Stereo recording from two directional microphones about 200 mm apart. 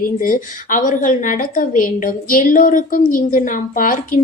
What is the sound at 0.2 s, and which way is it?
A woman's voice, 40° left (ahead or behind).